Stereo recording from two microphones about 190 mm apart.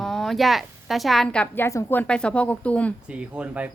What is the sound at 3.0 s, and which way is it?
Speech, 5° right (ahead or behind).